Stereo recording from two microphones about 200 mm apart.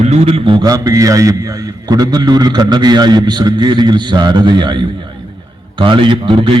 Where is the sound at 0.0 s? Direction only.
30° right (ahead or behind).